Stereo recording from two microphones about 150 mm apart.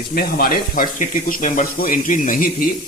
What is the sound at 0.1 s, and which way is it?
Speech, 75° left (ahead or behind).